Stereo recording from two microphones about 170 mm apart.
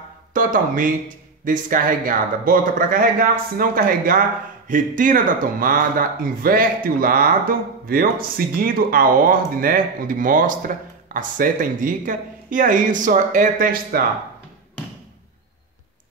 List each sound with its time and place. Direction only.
0.3 s speech: 50° right (ahead or behind)